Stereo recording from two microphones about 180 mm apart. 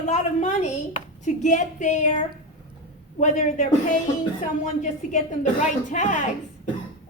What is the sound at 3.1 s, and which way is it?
A man's voice, 40° left (ahead or behind).